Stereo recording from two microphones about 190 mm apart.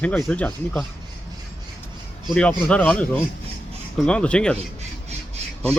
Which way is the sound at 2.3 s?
5° left (ahead or behind).